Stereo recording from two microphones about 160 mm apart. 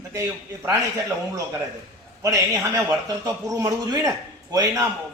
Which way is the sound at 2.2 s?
20° right (ahead or behind).